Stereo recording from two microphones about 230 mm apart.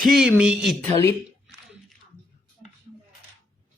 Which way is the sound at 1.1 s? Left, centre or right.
Centre.